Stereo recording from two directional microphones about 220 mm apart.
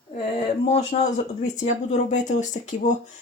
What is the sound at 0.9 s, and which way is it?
Speech, 35° left (ahead or behind).